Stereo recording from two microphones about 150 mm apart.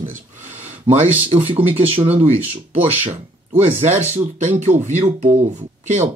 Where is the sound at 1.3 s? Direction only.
35° right (ahead or behind).